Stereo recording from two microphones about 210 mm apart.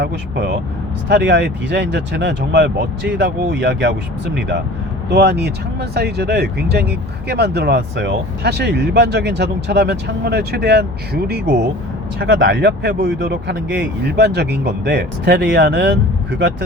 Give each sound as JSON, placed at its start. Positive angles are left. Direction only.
{"t": 0.0, "sound": "speech", "side_deg": -50}
{"t": 5.0, "sound": "speech", "side_deg": -50}